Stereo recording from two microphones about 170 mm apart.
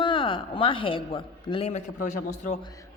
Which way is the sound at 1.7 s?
50° left (ahead or behind).